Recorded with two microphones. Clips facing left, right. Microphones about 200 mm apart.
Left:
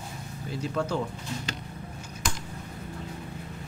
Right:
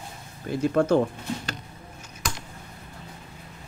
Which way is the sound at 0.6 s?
55° right (ahead or behind).